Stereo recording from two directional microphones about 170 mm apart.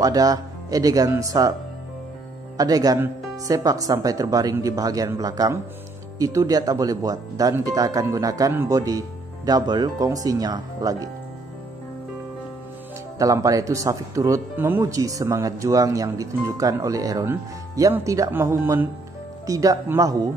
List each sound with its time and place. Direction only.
0.0 s speech: 20° right (ahead or behind)
2.5 s speech: 20° right (ahead or behind)
13.2 s speech: 20° right (ahead or behind)